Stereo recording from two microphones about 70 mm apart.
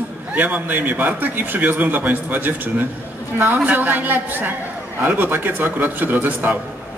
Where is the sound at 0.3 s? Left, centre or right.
Right.